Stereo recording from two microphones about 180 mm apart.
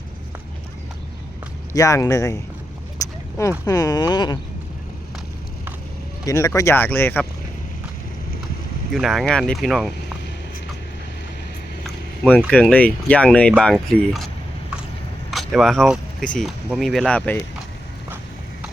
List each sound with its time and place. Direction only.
1.7 s speech: 20° left (ahead or behind)
3.0 s a sound: 15° left (ahead or behind)
3.7 s speech: 20° left (ahead or behind)
6.2 s speech: 15° left (ahead or behind)
8.9 s speech: centre (ahead or behind)
12.5 s speech: 5° left (ahead or behind)
15.3 s speech: centre (ahead or behind)